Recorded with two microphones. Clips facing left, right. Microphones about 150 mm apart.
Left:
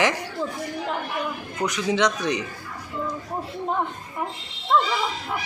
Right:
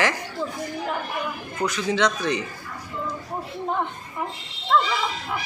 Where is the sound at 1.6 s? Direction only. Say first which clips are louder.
Even; 15° left (ahead or behind).